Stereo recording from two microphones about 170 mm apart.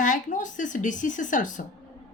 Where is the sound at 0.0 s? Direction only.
50° left (ahead or behind).